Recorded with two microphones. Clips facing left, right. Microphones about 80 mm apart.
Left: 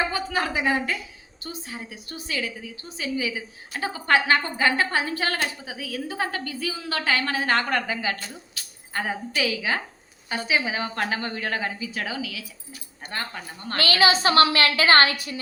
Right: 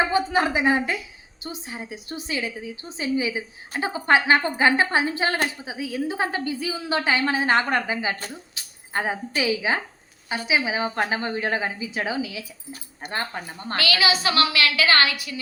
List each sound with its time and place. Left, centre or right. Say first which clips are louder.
0.0 s a woman's voice: right 5 dB; right
13.7 s a woman's voice: left 2 dB; left